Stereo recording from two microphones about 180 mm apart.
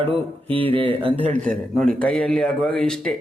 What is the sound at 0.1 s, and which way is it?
A man's voice, 30° right (ahead or behind).